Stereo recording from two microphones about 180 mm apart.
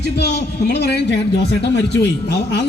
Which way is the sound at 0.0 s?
70° left (ahead or behind).